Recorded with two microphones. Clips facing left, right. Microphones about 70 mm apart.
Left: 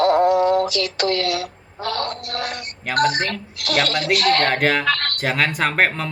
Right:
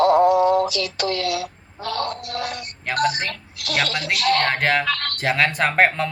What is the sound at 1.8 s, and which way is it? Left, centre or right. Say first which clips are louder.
Music: left 1 dB; left.